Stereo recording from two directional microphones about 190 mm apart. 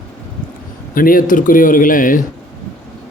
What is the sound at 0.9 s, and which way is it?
A man's voice, 45° left (ahead or behind).